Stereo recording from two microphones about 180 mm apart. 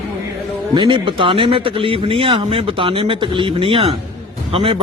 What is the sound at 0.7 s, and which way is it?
A man's voice, 25° right (ahead or behind).